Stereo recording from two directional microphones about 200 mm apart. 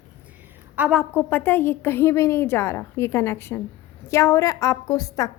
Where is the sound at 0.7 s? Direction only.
5° right (ahead or behind).